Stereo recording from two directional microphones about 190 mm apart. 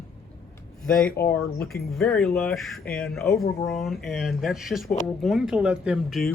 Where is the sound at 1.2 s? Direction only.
55° left (ahead or behind).